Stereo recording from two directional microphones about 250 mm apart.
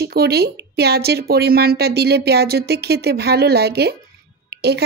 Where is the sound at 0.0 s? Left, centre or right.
Right.